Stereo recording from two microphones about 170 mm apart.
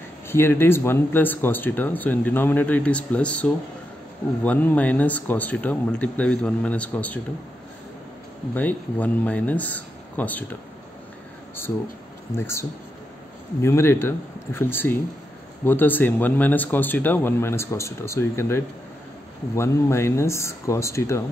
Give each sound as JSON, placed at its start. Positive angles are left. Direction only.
{"t": 0.3, "sound": "speech", "side_deg": 15}
{"t": 8.5, "sound": "speech", "side_deg": 10}
{"t": 12.4, "sound": "speech", "side_deg": 15}